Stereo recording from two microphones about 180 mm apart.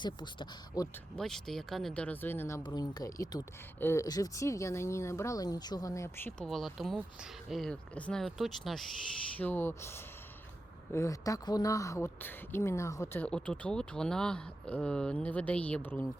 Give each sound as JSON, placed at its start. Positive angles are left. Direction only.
{"t": 0.0, "sound": "speech", "side_deg": 25}
{"t": 1.1, "sound": "speech", "side_deg": 0}